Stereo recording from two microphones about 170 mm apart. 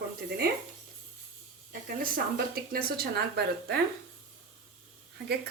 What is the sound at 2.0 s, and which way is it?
A woman's voice, 60° right (ahead or behind).